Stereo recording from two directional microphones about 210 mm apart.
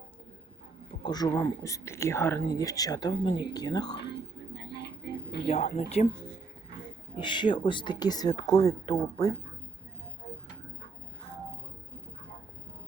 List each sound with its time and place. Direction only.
0.9 s speech: 20° left (ahead or behind)
4.0 s a sound: 50° left (ahead or behind)
5.6 s speech: 35° left (ahead or behind)
7.2 s speech: 20° left (ahead or behind)